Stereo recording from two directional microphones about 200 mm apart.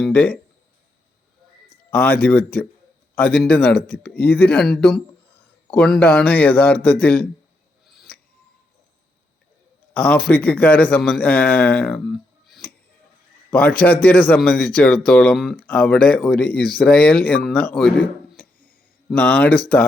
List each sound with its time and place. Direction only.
0.0 s a man's voice: 5° left (ahead or behind)
1.9 s a man's voice: 5° left (ahead or behind)
7.9 s a sound: 5° left (ahead or behind)
9.9 s a man's voice: 5° left (ahead or behind)
12.5 s a sound: centre (ahead or behind)
13.5 s a man's voice: 5° left (ahead or behind)